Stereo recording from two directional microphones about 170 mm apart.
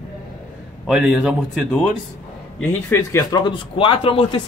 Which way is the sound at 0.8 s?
5° right (ahead or behind).